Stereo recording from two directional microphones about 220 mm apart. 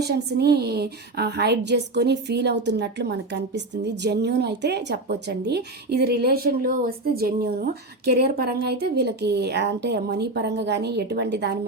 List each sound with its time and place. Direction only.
0.0 s a woman's voice: 45° right (ahead or behind)